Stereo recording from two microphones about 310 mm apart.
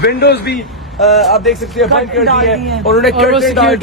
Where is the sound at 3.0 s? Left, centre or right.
Centre.